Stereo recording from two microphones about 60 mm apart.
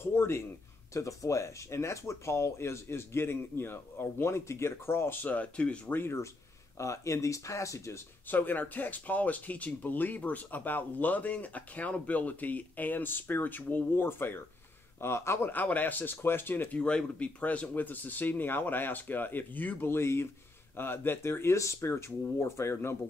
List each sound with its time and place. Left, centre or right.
0.0 s speech: left
0.9 s speech: left
5.2 s speech: left
5.9 s speech: left
6.8 s speech: left
8.3 s speech: left
15.5 s speech: left
16.7 s speech: centre; by 22.9 s left